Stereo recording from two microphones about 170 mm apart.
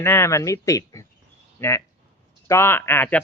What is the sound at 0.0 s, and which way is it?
Speech, 15° left (ahead or behind).